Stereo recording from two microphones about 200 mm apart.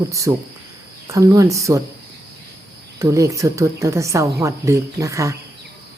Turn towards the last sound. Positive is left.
turn(degrees=-15)  # may be behind; listen again after turning